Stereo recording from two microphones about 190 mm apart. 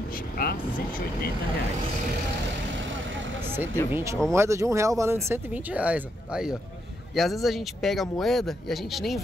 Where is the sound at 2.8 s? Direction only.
85° right.